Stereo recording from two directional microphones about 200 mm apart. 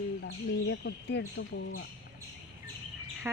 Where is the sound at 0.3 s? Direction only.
60° left (ahead or behind).